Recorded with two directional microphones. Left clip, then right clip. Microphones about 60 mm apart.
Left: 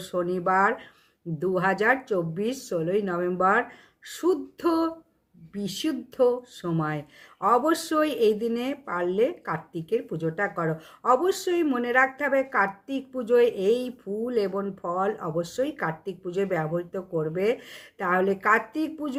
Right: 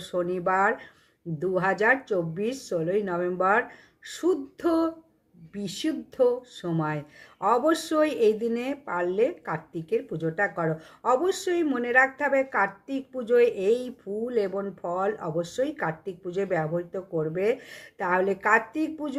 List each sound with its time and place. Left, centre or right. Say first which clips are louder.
0.3 s speech: left 2 dB; left